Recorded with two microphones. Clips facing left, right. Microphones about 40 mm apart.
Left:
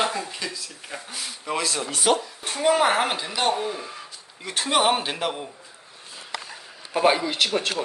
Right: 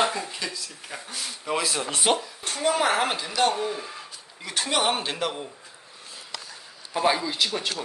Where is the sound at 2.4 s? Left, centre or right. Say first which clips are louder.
Left 3 dB; centre.